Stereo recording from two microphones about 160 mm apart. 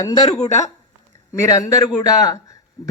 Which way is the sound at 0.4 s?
45° left (ahead or behind).